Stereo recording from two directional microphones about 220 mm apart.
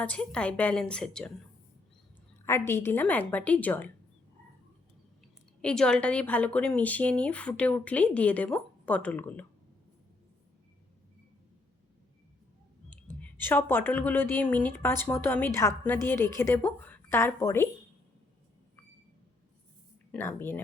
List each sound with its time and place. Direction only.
0.0 s a woman's voice: 5° left (ahead or behind)
2.4 s speech: 10° left (ahead or behind)
5.6 s a woman's voice: 5° left (ahead or behind)
13.2 s speech: 10° left (ahead or behind)
20.1 s speech: 10° left (ahead or behind)